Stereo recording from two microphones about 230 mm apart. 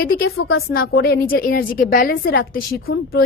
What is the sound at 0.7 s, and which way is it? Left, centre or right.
A woman's voice, left.